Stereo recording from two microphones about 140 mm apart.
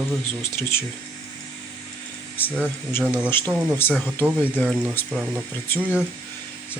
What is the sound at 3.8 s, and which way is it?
Speech, 15° left (ahead or behind).